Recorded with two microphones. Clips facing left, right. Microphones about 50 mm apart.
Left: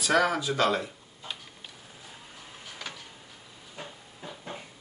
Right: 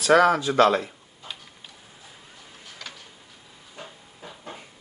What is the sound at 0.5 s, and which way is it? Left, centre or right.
Speech, right.